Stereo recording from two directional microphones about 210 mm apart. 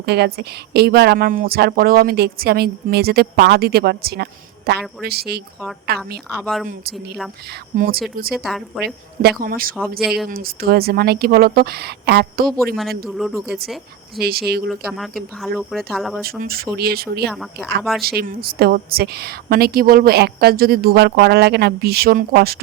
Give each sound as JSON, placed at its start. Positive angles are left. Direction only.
{"t": 0.0, "sound": "a woman's voice", "side_deg": -50}
{"t": 6.4, "sound": "speech", "side_deg": 0}
{"t": 7.8, "sound": "a woman's voice", "side_deg": -45}
{"t": 8.3, "sound": "speech", "side_deg": 0}
{"t": 9.4, "sound": "a woman's voice", "side_deg": -45}
{"t": 10.0, "sound": "speech", "side_deg": 0}
{"t": 10.2, "sound": "a woman's voice", "side_deg": -45}
{"t": 13.1, "sound": "speech", "side_deg": 0}
{"t": 14.2, "sound": "a woman's voice", "side_deg": -50}
{"t": 14.7, "sound": "speech", "side_deg": 0}
{"t": 16.4, "sound": "a woman's voice", "side_deg": -45}
{"t": 17.3, "sound": "speech", "side_deg": 0}
{"t": 18.0, "sound": "a woman's voice", "side_deg": -45}